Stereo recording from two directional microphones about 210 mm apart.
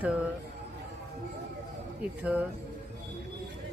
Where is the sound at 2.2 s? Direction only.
10° right (ahead or behind).